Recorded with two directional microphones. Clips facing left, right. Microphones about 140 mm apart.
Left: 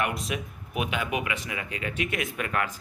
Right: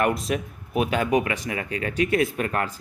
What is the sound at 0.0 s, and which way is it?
Speech, 40° right (ahead or behind).